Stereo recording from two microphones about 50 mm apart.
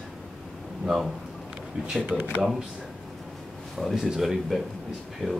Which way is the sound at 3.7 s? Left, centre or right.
Centre.